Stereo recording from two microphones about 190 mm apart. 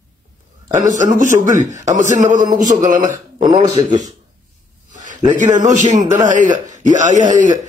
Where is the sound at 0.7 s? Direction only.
40° right (ahead or behind).